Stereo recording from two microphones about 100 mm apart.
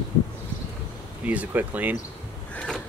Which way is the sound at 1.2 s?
15° right (ahead or behind).